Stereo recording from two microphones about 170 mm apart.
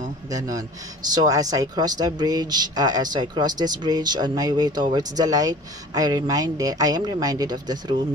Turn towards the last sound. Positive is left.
turn(degrees=-25)  # may be behind; listen again after turning